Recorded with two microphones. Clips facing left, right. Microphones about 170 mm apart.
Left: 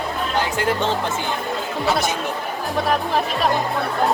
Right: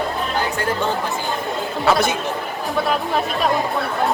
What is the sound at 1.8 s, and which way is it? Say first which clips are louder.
Speech: right 4 dB; 55° right (ahead or behind).